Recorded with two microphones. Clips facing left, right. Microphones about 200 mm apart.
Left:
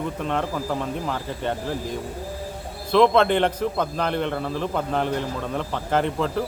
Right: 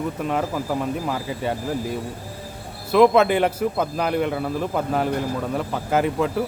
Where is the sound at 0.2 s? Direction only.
5° right (ahead or behind).